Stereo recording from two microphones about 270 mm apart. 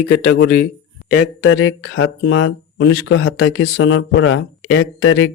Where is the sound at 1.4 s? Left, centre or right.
Left.